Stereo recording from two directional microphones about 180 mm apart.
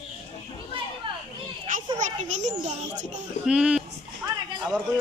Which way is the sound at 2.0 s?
40° right (ahead or behind).